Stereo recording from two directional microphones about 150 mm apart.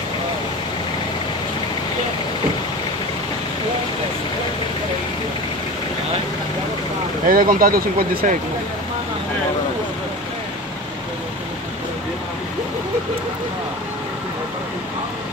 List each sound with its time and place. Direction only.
7.2 s speech: 70° right (ahead or behind)